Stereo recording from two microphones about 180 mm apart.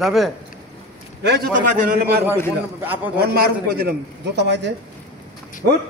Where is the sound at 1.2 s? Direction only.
65° right (ahead or behind).